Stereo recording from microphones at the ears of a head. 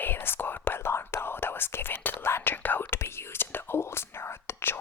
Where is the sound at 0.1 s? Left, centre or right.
Left.